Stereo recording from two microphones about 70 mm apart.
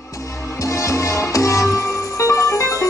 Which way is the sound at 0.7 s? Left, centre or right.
Left.